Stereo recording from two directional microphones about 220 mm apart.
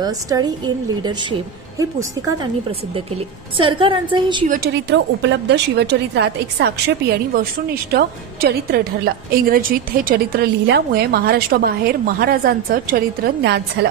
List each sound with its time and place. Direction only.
0.0 s a woman's voice: 20° right (ahead or behind)
1.8 s a woman's voice: 15° right (ahead or behind)
3.5 s a woman's voice: 25° right (ahead or behind)
4.8 s a woman's voice: 55° right (ahead or behind)